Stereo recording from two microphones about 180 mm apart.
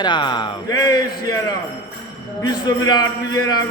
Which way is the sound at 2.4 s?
20° left (ahead or behind).